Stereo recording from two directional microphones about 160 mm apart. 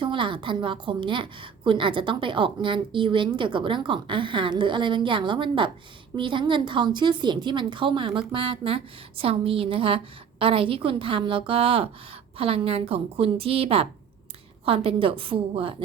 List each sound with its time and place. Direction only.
0.0 s a woman's voice: 30° right (ahead or behind)
14.8 s a woman's voice: 35° right (ahead or behind)